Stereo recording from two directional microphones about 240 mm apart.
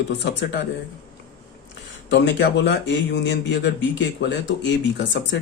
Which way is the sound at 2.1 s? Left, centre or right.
Left.